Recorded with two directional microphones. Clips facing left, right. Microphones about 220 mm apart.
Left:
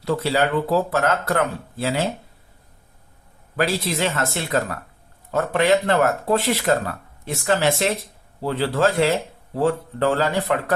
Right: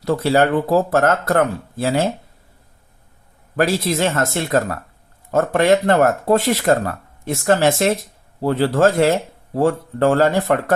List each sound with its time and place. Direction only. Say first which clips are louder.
0.0 s speech: right 5 dB; 45° right (ahead or behind)
3.5 s speech: right 4 dB; 45° right (ahead or behind)